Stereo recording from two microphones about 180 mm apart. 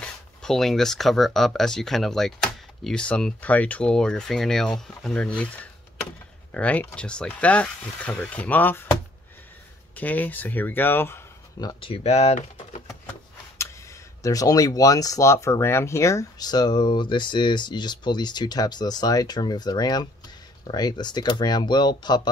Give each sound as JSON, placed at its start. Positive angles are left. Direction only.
{"t": 0.0, "sound": "speech", "side_deg": 5}
{"t": 9.9, "sound": "speech", "side_deg": 10}
{"t": 11.8, "sound": "speech", "side_deg": 35}
{"t": 14.2, "sound": "speech", "side_deg": 20}